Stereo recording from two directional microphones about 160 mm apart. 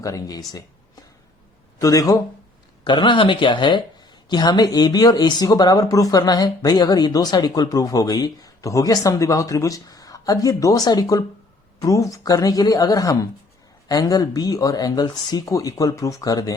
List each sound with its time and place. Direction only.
0.0 s speech: 20° left (ahead or behind)